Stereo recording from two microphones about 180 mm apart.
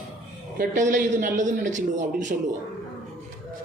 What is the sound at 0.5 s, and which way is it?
A man's voice, 45° right (ahead or behind).